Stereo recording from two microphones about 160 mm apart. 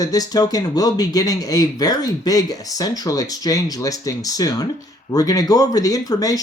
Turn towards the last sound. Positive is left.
turn(degrees=20)  # may be behind; listen again after turning